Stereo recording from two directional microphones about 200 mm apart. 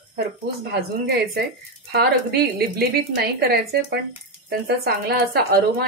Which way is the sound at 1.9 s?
50° right (ahead or behind).